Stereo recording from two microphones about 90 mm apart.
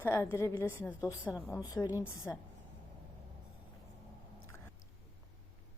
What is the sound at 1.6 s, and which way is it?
Speech, 45° left (ahead or behind).